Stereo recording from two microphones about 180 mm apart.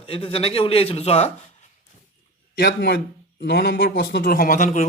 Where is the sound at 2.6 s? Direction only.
60° left (ahead or behind).